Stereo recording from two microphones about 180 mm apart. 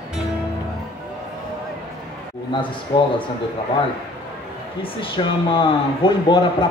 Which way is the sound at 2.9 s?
25° left (ahead or behind).